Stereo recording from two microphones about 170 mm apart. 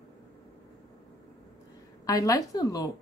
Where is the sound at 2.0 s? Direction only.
20° left (ahead or behind).